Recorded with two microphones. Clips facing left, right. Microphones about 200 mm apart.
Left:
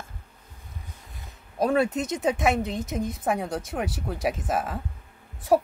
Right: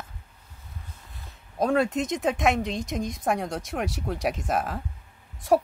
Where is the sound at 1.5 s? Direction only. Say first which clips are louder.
Even; 5° left (ahead or behind).